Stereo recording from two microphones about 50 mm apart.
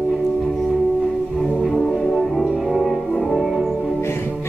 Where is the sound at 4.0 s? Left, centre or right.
Left.